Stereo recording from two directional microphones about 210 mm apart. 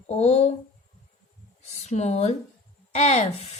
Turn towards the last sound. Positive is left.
turn(degrees=30)  # may be behind; listen again after turning